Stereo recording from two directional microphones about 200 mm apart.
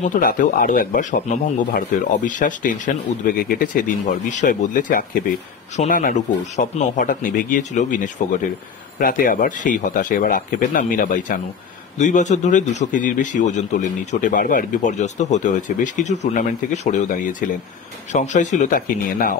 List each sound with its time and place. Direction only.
0.0 s a man's voice: 40° left (ahead or behind)